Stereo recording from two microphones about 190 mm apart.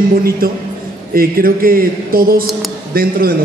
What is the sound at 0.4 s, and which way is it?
A man's voice, 50° right (ahead or behind).